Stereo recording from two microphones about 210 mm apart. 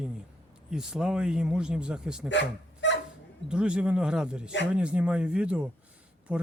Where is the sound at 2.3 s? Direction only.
60° left (ahead or behind).